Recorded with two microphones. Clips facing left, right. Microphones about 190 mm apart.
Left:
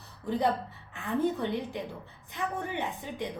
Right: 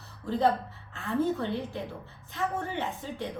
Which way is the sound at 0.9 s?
15° left (ahead or behind).